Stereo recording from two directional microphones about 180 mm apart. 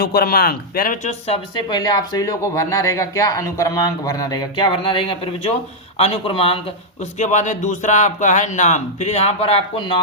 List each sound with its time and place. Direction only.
0.0 s speech: 55° left (ahead or behind)
1.3 s speech: 25° left (ahead or behind)
7.0 s speech: 40° left (ahead or behind)